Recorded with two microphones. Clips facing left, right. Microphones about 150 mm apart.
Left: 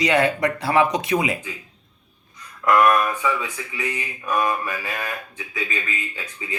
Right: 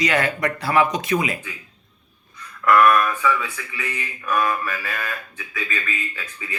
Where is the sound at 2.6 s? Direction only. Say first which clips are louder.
Right 1 dB; 15° left (ahead or behind).